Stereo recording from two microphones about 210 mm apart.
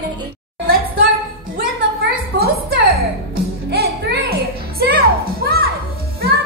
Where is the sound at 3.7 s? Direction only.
50° right (ahead or behind).